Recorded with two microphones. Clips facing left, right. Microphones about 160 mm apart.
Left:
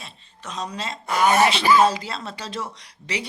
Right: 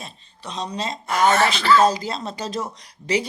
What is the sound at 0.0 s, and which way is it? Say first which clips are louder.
Speech: right 3 dB; 35° right (ahead or behind).